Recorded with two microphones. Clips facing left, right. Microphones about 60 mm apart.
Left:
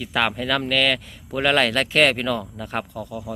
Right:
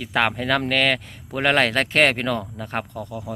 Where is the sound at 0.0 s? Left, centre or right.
Right.